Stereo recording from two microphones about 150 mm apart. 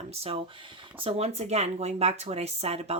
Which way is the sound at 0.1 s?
40° right (ahead or behind).